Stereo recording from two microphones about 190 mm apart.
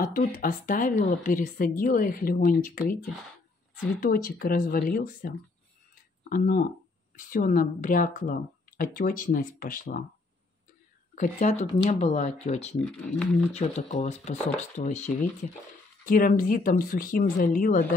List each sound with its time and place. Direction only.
0.0 s a woman's voice: 45° left (ahead or behind)
4.0 s a woman's voice: 50° left (ahead or behind)
11.1 s speech: 40° left (ahead or behind)
12.8 s speech: 5° left (ahead or behind)
13.5 s a woman's voice: 35° left (ahead or behind)